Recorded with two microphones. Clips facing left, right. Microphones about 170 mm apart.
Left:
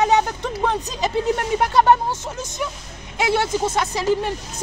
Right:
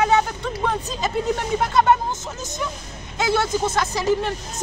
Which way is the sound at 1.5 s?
15° left (ahead or behind).